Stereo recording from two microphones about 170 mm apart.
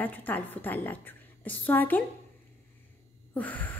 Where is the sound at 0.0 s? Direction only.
10° left (ahead or behind).